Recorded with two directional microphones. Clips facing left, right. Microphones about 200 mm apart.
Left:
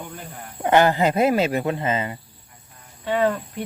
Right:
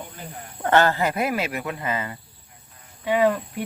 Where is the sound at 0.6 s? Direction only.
15° left (ahead or behind).